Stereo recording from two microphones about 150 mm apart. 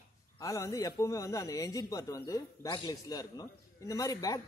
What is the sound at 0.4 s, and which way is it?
A man's voice, 20° left (ahead or behind).